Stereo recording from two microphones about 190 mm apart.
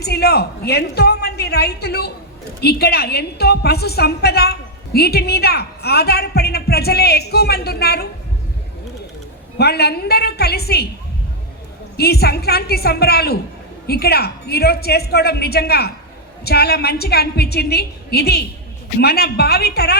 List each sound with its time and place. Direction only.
0.0 s a woman's voice: 55° left (ahead or behind)
9.6 s a woman's voice: 60° left (ahead or behind)
11.9 s a woman's voice: 55° left (ahead or behind)